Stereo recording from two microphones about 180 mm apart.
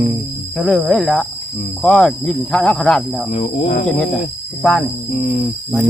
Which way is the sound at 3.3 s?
40° left (ahead or behind).